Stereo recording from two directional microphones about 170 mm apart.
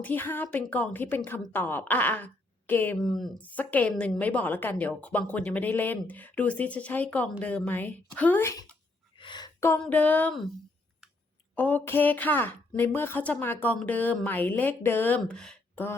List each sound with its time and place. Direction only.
0.0 s a woman's voice: 10° left (ahead or behind)
3.0 s a woman's voice: centre (ahead or behind)
9.1 s a sound: 25° left (ahead or behind)
9.8 s a woman's voice: 10° left (ahead or behind)
11.5 s a woman's voice: 10° left (ahead or behind)